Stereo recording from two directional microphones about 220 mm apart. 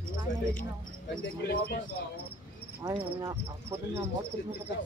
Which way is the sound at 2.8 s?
15° right (ahead or behind).